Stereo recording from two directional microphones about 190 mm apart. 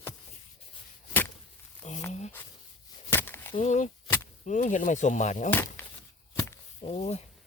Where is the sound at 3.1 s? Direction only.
10° left (ahead or behind).